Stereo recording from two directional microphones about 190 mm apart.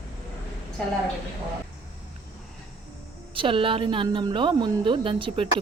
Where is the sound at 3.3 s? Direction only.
25° right (ahead or behind).